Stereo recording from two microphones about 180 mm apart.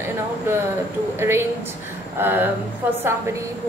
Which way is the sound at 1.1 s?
15° right (ahead or behind).